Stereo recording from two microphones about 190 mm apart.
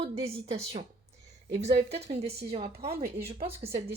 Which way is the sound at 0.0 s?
30° right (ahead or behind).